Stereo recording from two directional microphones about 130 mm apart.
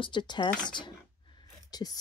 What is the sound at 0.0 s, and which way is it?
Speech, 35° left (ahead or behind).